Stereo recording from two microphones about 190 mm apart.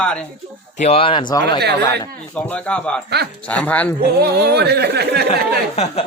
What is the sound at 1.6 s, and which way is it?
Speech, 60° right (ahead or behind).